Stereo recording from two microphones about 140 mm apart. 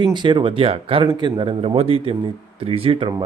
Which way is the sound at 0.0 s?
35° right (ahead or behind).